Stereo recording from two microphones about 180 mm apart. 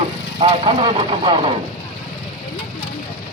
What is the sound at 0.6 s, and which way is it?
Speech, 30° right (ahead or behind).